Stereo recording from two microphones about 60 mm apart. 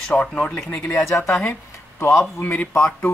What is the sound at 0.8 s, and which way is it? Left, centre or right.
Speech, left.